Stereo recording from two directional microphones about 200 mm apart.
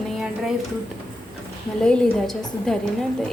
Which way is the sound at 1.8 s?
5° left (ahead or behind).